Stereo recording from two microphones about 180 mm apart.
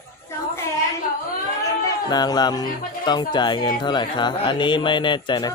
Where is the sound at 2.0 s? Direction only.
25° left (ahead or behind).